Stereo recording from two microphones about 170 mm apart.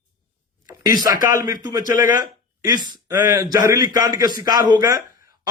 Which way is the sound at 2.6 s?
20° right (ahead or behind).